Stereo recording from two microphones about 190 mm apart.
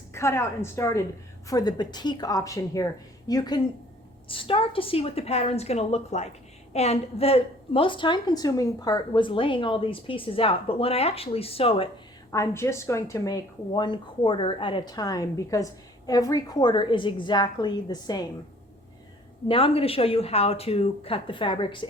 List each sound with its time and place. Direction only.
0.1 s a woman's voice: 15° left (ahead or behind); by 11.9 s 30° left (ahead or behind)
12.3 s speech: 15° left (ahead or behind)
19.5 s speech: 30° left (ahead or behind)